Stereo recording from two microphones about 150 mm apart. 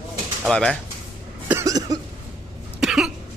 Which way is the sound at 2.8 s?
5° right (ahead or behind).